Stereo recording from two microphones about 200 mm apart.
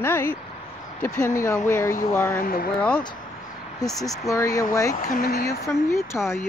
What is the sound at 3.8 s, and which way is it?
Speech, 15° left (ahead or behind).